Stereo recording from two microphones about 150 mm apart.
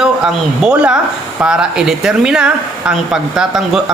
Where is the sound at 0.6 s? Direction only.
5° right (ahead or behind).